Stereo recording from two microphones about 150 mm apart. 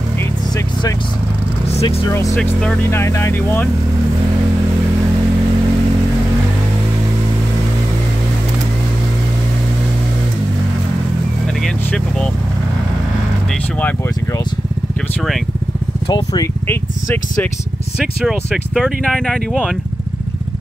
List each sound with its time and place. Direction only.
2.0 s speech: 20° left (ahead or behind)
11.6 s vehicle: 5° left (ahead or behind)
16.6 s speech: 15° left (ahead or behind)
18.2 s speech: centre (ahead or behind)